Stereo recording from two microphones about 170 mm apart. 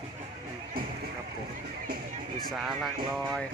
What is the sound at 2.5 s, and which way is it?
Speech, centre (ahead or behind).